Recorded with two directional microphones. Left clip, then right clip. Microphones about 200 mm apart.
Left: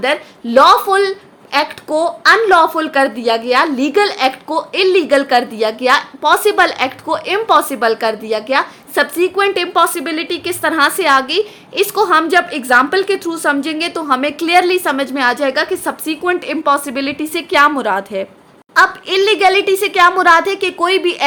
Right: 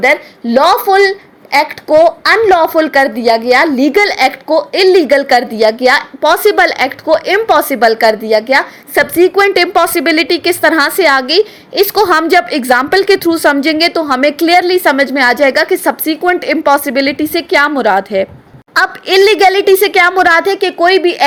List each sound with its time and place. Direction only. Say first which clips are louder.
0.0 s speech: right 6 dB; 20° right (ahead or behind)